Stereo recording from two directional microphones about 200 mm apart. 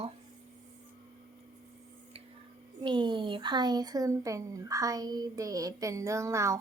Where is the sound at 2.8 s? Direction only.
25° right (ahead or behind).